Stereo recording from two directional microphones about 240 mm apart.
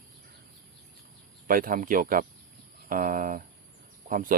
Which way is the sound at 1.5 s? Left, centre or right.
Right.